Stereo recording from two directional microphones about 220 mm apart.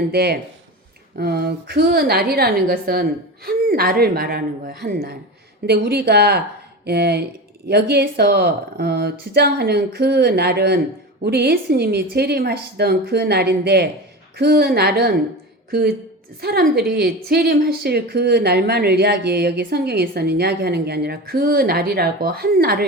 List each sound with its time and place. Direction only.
0.1 s a woman's voice: 45° right (ahead or behind)